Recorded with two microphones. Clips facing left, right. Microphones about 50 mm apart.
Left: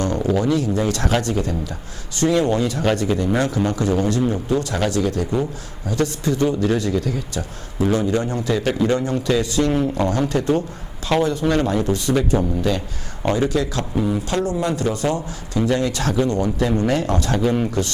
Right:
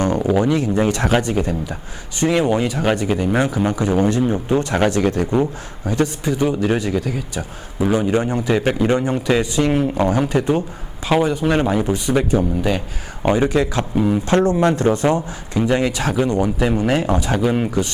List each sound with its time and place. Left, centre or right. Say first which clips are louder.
0.0 s a man's voice: right 3 dB; centre
15.9 s speech: right 1 dB; centre